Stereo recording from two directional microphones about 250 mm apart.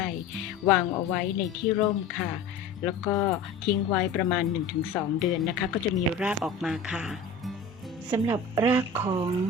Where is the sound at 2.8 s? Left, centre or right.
Centre.